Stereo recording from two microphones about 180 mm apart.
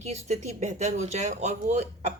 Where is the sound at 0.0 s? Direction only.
40° right (ahead or behind).